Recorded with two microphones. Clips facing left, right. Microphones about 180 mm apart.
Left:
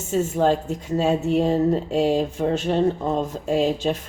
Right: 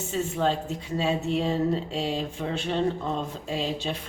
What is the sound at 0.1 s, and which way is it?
A woman's voice, 45° left (ahead or behind).